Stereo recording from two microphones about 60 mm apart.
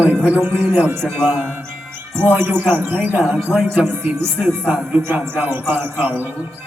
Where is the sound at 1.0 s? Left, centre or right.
Centre.